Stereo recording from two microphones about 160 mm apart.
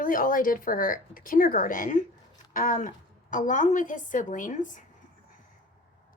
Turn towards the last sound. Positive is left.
turn(degrees=55)  # may be behind; listen again after turning